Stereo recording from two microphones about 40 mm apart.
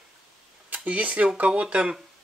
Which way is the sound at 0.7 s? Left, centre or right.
Right.